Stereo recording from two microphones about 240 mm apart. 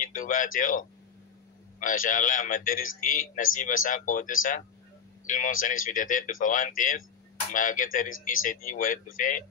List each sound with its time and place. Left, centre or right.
0.0 s a man's voice: left